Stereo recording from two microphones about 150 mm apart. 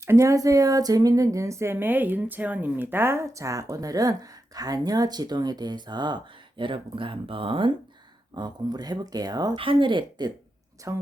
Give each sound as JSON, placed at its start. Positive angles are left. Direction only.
{"t": 0.0, "sound": "speech", "side_deg": -20}